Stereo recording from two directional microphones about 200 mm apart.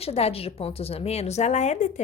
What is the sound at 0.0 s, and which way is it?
A woman's voice, 30° left (ahead or behind).